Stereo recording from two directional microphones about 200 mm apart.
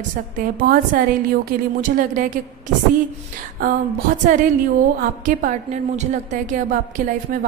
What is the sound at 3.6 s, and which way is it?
A woman's voice, 40° right (ahead or behind).